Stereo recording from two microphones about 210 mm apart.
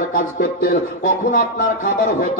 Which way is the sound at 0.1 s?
40° left (ahead or behind).